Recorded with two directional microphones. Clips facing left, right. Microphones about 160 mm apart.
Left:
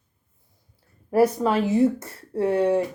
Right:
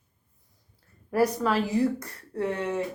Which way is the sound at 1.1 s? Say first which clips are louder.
Left 5 dB; 25° left (ahead or behind).